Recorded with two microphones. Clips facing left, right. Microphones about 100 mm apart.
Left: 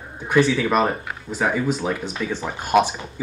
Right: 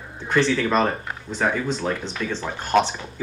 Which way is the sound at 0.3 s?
10° left (ahead or behind).